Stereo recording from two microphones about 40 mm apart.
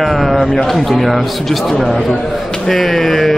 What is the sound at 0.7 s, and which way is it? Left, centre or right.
Speech, centre.